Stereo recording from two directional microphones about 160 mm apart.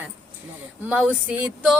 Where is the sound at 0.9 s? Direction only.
10° right (ahead or behind).